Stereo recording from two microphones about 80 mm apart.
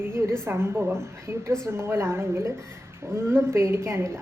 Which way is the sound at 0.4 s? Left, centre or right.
Right.